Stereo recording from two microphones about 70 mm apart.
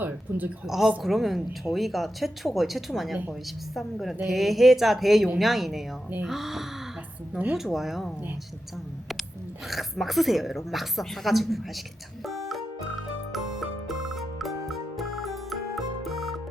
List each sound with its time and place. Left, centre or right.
0.0 s a sound: right
0.7 s speech: centre
9.6 s speech: centre
12.2 s music: centre